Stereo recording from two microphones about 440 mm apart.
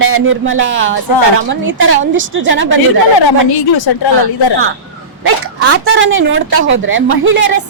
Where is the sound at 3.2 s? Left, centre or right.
Left.